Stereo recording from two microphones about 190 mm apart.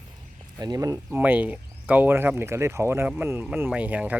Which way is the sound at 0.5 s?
20° right (ahead or behind).